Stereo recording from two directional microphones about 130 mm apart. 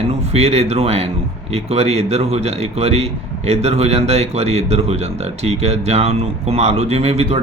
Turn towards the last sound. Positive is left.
turn(degrees=-55)  # may be behind; listen again after turning